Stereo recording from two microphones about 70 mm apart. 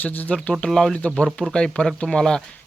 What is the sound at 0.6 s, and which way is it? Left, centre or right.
Speech, centre.